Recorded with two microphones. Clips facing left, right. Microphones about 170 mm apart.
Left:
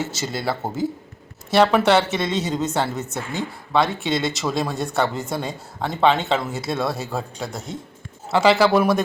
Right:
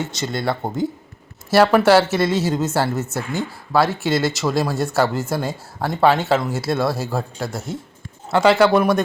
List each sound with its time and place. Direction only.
0.0 s a woman's voice: 5° left (ahead or behind)